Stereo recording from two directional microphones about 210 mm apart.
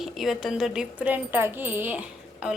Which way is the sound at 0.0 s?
Centre (ahead or behind).